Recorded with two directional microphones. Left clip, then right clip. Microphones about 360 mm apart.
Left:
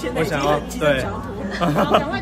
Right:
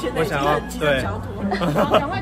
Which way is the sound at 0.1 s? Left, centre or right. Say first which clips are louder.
Left 1 dB; centre.